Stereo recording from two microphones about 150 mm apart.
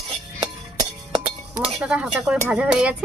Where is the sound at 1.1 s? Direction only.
40° right (ahead or behind).